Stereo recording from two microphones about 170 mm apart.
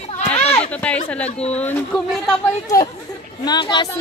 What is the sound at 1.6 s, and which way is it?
Speech, 10° left (ahead or behind).